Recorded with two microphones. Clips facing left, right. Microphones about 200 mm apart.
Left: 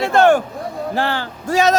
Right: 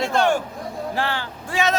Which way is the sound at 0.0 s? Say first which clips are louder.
Left 6 dB; 55° left (ahead or behind).